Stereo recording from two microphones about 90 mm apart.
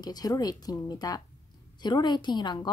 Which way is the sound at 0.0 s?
45° left (ahead or behind).